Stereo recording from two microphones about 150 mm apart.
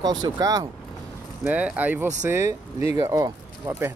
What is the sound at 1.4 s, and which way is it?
Speech, 10° right (ahead or behind).